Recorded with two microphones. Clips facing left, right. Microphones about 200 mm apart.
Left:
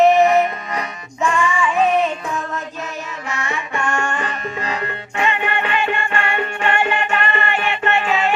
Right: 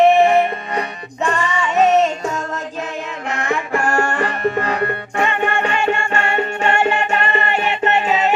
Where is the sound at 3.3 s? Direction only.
60° right (ahead or behind); by 8.0 s 40° right (ahead or behind).